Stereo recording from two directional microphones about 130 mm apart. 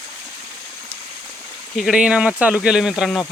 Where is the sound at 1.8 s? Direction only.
5° right (ahead or behind).